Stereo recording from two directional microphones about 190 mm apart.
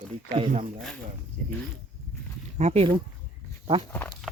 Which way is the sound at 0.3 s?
30° right (ahead or behind).